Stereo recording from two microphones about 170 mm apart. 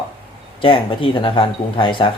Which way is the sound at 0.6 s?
30° left (ahead or behind).